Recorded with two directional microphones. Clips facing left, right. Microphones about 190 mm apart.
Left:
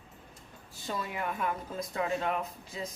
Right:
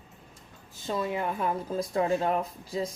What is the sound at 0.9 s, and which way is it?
Speech, 25° right (ahead or behind).